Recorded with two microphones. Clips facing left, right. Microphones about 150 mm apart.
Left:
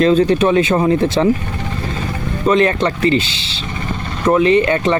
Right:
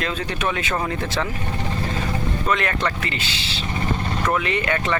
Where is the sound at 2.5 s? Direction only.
25° left (ahead or behind).